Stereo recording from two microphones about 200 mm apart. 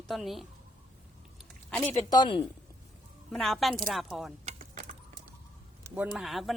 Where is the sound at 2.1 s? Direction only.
20° left (ahead or behind).